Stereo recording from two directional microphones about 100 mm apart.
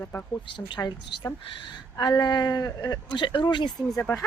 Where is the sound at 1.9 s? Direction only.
40° left (ahead or behind).